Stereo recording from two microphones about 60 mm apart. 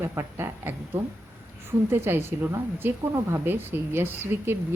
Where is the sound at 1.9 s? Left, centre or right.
Right.